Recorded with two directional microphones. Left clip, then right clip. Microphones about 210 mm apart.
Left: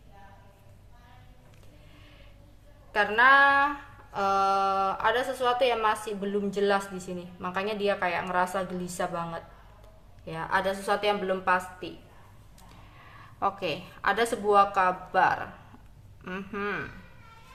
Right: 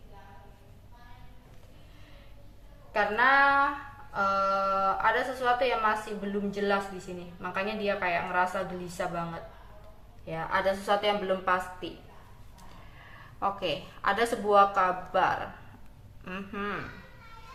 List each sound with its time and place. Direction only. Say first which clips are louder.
2.9 s a woman's voice: left 3 dB; 35° left (ahead or behind)
13.4 s a woman's voice: left 1 dB; 25° left (ahead or behind)